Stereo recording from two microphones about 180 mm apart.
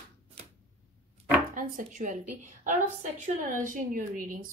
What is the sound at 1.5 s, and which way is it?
A woman's voice, 45° right (ahead or behind).